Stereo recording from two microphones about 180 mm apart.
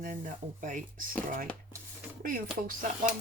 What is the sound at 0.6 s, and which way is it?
Speech, 45° right (ahead or behind).